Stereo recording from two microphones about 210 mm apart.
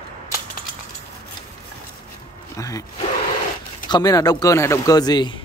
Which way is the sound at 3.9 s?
20° left (ahead or behind).